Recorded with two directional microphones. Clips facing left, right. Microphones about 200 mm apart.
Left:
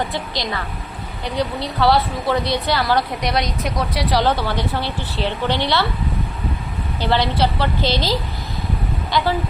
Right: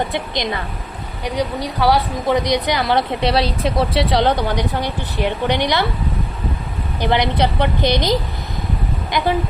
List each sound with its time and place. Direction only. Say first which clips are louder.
0.1 s a woman's voice: right 3 dB; 20° right (ahead or behind)
7.0 s a woman's voice: right 1 dB; 15° right (ahead or behind)
9.1 s a woman's voice: even; 20° right (ahead or behind)